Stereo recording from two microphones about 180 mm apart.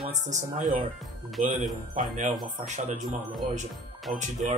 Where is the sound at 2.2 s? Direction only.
40° right (ahead or behind).